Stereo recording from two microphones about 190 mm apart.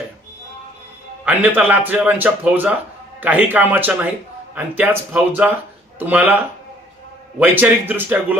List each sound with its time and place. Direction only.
1.2 s speech: 10° right (ahead or behind)
7.3 s speech: 10° right (ahead or behind)